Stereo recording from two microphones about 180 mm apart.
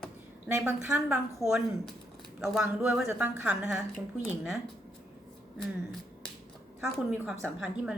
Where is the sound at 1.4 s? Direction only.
Centre (ahead or behind).